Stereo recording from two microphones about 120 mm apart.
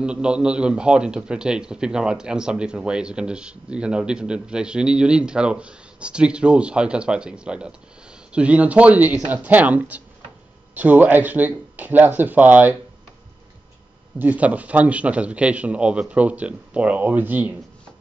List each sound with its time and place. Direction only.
0.0 s a man's voice: 10° right (ahead or behind)
14.1 s a man's voice: 15° right (ahead or behind)